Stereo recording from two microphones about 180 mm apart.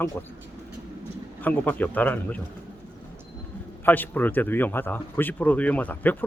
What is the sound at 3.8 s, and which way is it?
Speech, 10° left (ahead or behind).